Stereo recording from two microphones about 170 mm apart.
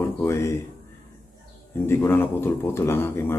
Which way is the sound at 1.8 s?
15° left (ahead or behind).